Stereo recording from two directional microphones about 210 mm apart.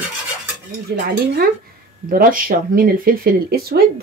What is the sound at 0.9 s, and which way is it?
Speech, 50° right (ahead or behind).